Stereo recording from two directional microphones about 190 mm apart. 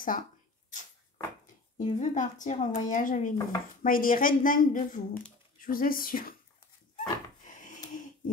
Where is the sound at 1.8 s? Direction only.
40° left (ahead or behind).